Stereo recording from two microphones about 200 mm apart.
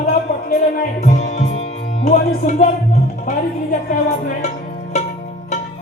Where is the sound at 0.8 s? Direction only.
35° left (ahead or behind).